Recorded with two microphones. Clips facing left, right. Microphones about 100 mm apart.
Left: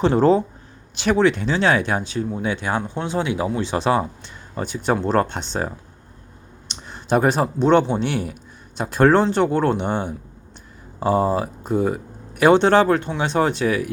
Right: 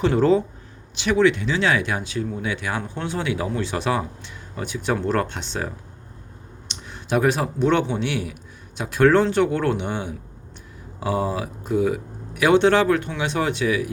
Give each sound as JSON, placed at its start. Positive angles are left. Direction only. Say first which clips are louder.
{"t": 0.0, "sound": "speech", "louder": "left 2 dB", "side_deg": 30}
{"t": 6.7, "sound": "speech", "louder": "left 4 dB", "side_deg": 35}